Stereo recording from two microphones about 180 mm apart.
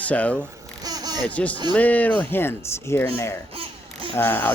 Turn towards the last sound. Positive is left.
turn(degrees=10)  # may be behind; listen again after turning